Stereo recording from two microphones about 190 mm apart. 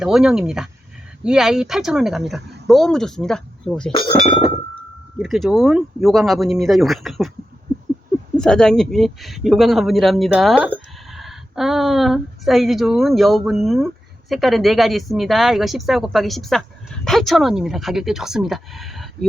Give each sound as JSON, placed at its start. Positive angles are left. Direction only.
{"t": 0.0, "sound": "a man's voice", "side_deg": -5}
{"t": 5.2, "sound": "a man's voice", "side_deg": 0}
{"t": 8.4, "sound": "a man's voice", "side_deg": 5}